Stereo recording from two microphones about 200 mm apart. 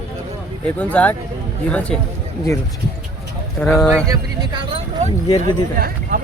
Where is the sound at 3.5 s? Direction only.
5° left (ahead or behind).